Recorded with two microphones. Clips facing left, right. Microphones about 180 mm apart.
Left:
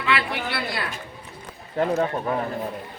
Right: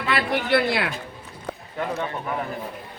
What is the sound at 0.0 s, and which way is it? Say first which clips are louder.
Speech: right 1 dB; 40° right (ahead or behind).